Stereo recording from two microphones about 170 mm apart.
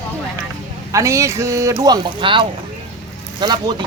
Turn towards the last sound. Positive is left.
turn(degrees=-25)  # may be behind; listen again after turning